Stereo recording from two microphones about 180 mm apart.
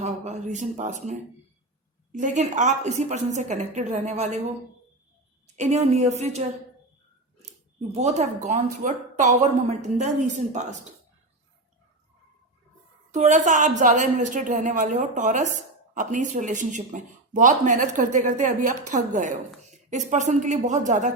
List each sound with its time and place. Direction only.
0.0 s a woman's voice: 40° right (ahead or behind)
5.5 s speech: 40° right (ahead or behind)
13.1 s a woman's voice: 40° right (ahead or behind)